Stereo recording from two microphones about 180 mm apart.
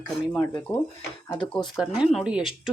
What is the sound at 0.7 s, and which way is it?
Speech, 10° left (ahead or behind).